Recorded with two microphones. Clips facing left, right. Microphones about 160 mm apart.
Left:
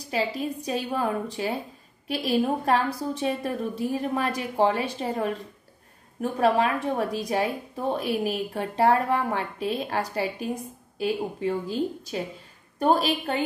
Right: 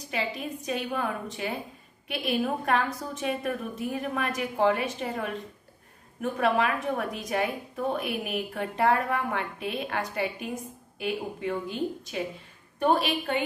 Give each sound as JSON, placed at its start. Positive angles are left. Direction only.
{"t": 0.1, "sound": "a woman's voice", "side_deg": 35}
{"t": 6.4, "sound": "a woman's voice", "side_deg": 35}